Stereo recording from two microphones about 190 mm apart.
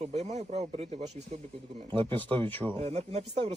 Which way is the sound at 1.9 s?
25° right (ahead or behind).